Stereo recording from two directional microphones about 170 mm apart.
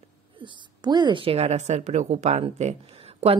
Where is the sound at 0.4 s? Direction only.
25° right (ahead or behind).